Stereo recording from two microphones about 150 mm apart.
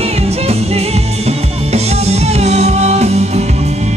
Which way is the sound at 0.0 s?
45° right (ahead or behind).